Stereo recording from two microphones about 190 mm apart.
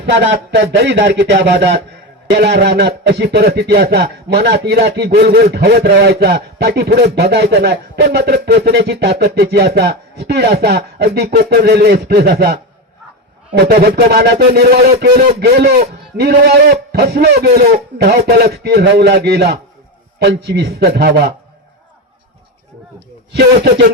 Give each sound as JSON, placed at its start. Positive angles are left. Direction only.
{"t": 0.0, "sound": "speech", "side_deg": -70}
{"t": 2.3, "sound": "speech", "side_deg": -60}
{"t": 23.3, "sound": "speech", "side_deg": -60}